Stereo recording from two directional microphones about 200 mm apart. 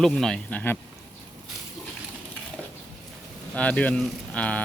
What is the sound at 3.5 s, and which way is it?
Speech, 5° left (ahead or behind).